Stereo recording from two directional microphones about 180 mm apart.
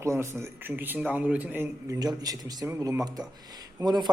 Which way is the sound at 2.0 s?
20° right (ahead or behind).